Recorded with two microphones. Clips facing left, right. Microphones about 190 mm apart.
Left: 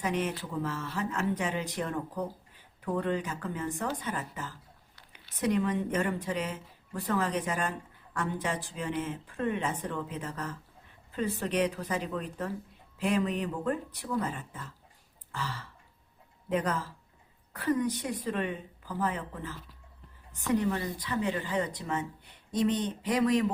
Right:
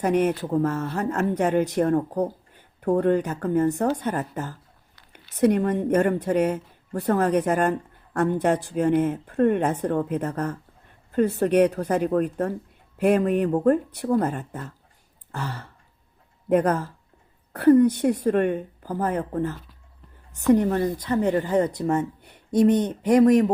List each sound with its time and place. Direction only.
0.0 s speech: 60° right (ahead or behind)
1.2 s speech: 55° right (ahead or behind)
15.3 s a sound: 55° right (ahead or behind)
16.5 s speech: 55° right (ahead or behind)
18.2 s speech: 50° right (ahead or behind)